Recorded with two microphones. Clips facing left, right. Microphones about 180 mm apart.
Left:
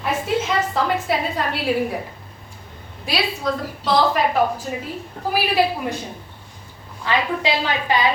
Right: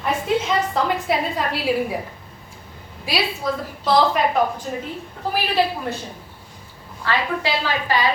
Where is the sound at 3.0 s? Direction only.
Centre (ahead or behind).